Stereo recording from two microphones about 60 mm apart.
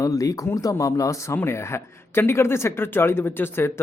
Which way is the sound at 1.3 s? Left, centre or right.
Left.